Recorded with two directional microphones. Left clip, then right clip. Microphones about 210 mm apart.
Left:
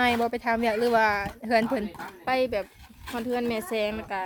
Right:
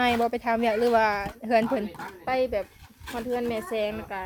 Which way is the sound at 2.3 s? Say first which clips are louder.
Even; 50° left (ahead or behind).